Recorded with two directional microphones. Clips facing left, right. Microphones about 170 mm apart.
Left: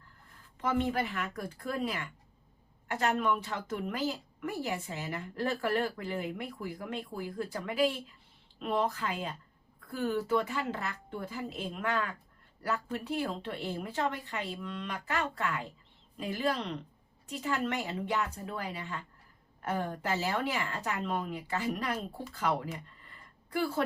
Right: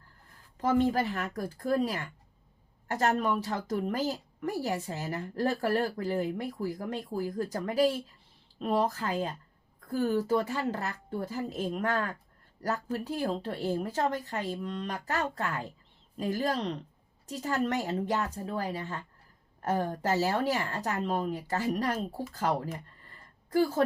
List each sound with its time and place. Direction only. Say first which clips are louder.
0.6 s a woman's voice: right 5 dB; 40° right (ahead or behind)